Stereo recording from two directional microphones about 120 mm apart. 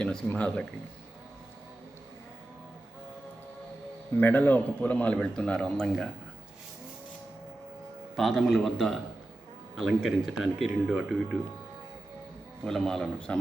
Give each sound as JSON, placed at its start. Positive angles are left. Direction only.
{"t": 0.3, "sound": "speech", "side_deg": 10}
{"t": 4.2, "sound": "speech", "side_deg": 15}
{"t": 8.1, "sound": "speech", "side_deg": 0}
{"t": 12.6, "sound": "speech", "side_deg": 5}